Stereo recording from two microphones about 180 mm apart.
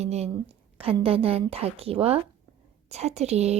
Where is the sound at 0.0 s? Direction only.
35° right (ahead or behind).